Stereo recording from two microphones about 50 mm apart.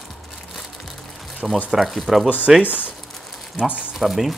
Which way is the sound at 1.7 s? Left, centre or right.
Centre.